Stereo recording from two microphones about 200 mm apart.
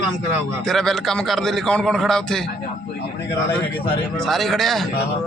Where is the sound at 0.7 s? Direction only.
Centre (ahead or behind).